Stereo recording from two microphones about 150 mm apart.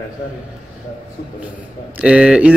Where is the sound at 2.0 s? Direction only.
5° right (ahead or behind).